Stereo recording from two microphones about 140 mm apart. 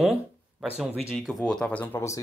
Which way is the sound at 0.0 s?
5° right (ahead or behind).